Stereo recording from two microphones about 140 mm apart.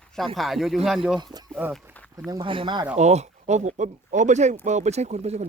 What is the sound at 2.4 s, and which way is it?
Speech, 35° right (ahead or behind).